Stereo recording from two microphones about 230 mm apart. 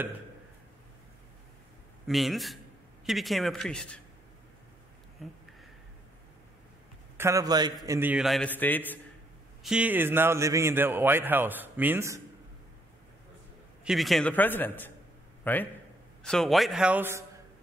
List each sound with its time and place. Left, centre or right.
2.0 s a man's voice: centre
7.2 s a man's voice: centre
9.6 s speech: centre
13.8 s a man's voice: centre